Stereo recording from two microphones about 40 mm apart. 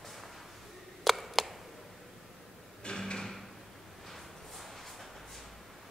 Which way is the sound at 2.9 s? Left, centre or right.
Left.